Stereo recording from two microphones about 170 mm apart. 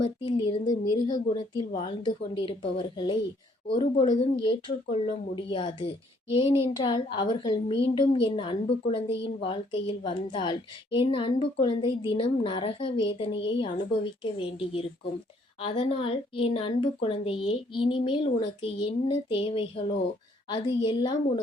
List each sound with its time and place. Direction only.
0.3 s a woman's voice: 30° left (ahead or behind)